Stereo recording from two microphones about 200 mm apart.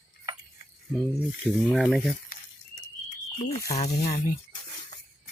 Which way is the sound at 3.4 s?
35° left (ahead or behind).